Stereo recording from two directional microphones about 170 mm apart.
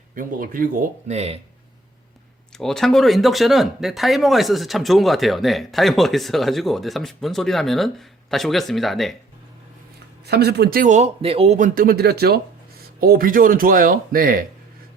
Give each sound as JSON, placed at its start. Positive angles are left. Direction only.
{"t": 0.1, "sound": "speech", "side_deg": -55}
{"t": 2.6, "sound": "speech", "side_deg": 0}
{"t": 10.2, "sound": "speech", "side_deg": -70}